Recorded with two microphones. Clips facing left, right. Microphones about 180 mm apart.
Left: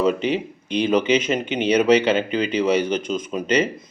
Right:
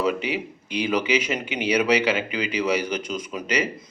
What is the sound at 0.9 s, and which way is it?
Speech, 25° left (ahead or behind).